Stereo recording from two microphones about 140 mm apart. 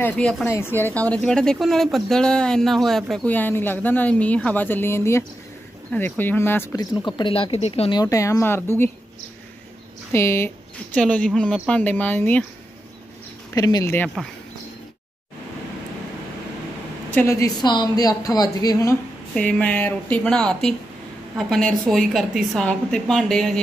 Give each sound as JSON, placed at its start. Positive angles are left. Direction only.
{"t": 0.0, "sound": "speech", "side_deg": 5}
{"t": 3.3, "sound": "speech", "side_deg": 15}
{"t": 7.1, "sound": "speech", "side_deg": 35}
{"t": 7.9, "sound": "speech", "side_deg": 25}
{"t": 10.1, "sound": "speech", "side_deg": 20}
{"t": 13.6, "sound": "speech", "side_deg": 25}
{"t": 13.8, "sound": "speech", "side_deg": 15}
{"t": 17.1, "sound": "speech", "side_deg": 20}
{"t": 19.3, "sound": "speech", "side_deg": 10}